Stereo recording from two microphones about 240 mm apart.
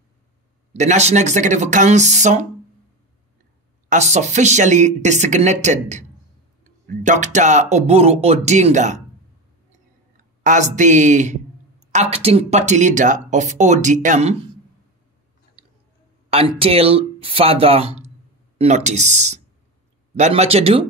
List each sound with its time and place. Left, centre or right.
0.7 s speech: right
3.9 s speech: right
10.1 s speech: right
16.3 s speech: right